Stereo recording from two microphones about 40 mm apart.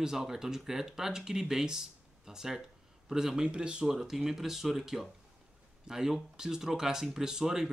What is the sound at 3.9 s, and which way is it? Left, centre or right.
Speech, centre.